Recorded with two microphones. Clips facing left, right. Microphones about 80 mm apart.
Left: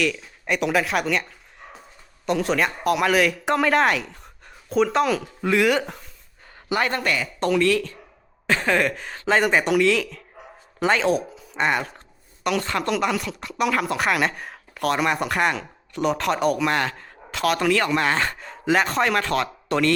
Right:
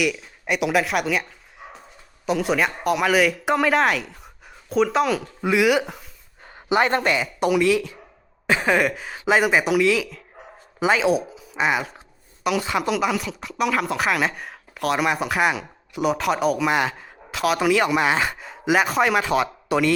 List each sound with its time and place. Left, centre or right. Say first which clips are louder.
0.0 s speech: right 1 dB; centre
6.7 s speech: right 4 dB; right